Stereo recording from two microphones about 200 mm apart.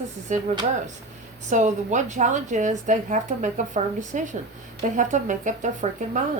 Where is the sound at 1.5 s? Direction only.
35° right (ahead or behind).